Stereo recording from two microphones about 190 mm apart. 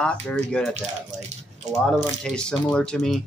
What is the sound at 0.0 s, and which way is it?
Speech, 5° left (ahead or behind).